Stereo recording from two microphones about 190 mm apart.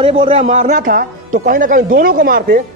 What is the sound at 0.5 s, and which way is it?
A man's voice, 40° right (ahead or behind).